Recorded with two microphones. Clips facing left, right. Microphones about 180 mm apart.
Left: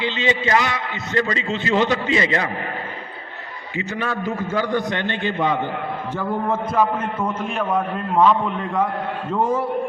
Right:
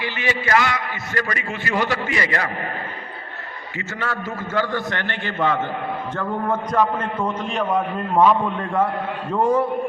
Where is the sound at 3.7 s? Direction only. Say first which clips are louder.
Left 3 dB; 20° left (ahead or behind).